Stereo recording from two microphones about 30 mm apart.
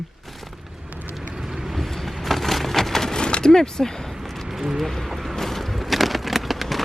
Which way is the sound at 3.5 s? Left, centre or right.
Centre.